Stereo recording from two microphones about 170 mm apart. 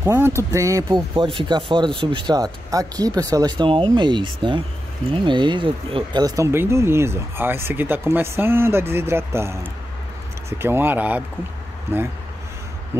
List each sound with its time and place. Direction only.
0.0 s speech: 15° right (ahead or behind)